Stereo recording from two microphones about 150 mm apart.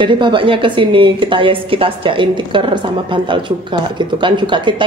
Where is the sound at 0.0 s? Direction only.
35° right (ahead or behind).